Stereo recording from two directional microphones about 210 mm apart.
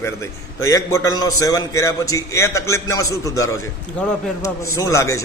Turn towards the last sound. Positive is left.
turn(degrees=15)  # may be behind; listen again after turning